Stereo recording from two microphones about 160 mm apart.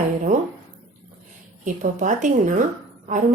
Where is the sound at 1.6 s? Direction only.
50° right (ahead or behind).